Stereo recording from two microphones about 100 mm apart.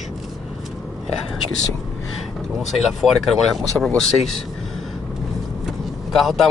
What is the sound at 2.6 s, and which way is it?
Speech, centre (ahead or behind).